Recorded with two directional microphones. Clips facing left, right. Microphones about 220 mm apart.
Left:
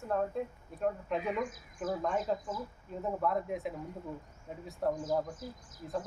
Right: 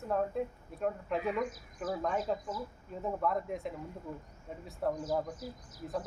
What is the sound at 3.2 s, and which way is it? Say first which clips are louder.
Speech: left 1 dB; centre (ahead or behind).